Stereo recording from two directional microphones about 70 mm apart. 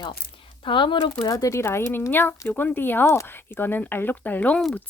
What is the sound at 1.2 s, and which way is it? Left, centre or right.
Speech, left.